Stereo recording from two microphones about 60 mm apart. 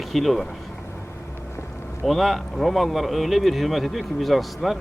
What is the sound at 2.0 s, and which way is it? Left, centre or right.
Speech, centre.